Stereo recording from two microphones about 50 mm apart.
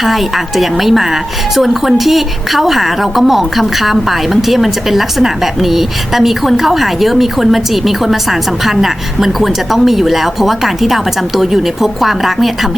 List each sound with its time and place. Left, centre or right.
0.0 s a woman's voice: centre